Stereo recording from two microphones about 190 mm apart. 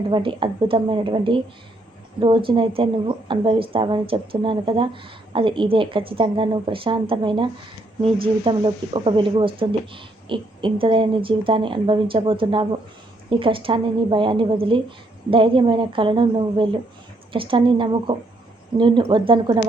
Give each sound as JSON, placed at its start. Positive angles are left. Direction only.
{"t": 0.1, "sound": "speech", "side_deg": -25}